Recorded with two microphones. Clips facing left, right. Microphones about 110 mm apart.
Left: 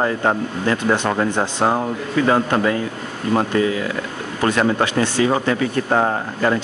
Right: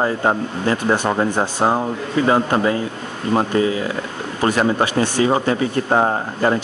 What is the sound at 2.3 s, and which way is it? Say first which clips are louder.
Speech: right 1 dB; 25° right (ahead or behind).